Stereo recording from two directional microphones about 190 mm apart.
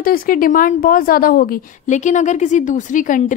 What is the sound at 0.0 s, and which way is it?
A woman's voice, 50° left (ahead or behind).